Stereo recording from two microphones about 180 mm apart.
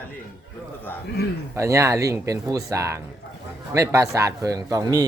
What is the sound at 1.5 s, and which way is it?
A man's voice, 15° right (ahead or behind).